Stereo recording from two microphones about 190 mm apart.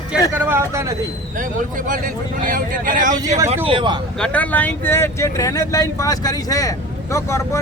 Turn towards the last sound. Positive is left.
turn(degrees=15)  # may be behind; listen again after turning